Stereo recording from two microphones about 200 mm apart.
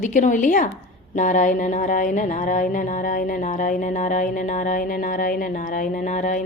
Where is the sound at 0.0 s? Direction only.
40° left (ahead or behind).